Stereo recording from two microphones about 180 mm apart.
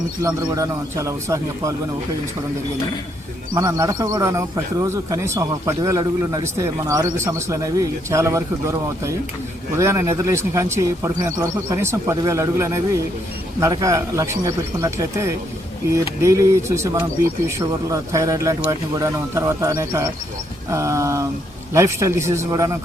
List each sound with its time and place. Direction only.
0.2 s a man's voice: 20° right (ahead or behind)
3.5 s a man's voice: 20° right (ahead or behind)